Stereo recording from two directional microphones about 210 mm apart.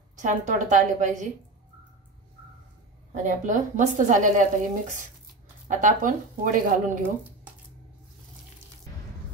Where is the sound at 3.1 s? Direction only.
35° right (ahead or behind).